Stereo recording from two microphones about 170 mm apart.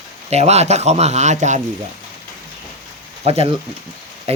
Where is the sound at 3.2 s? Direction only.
35° right (ahead or behind).